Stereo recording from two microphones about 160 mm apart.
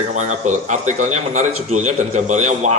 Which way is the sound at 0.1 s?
50° right (ahead or behind).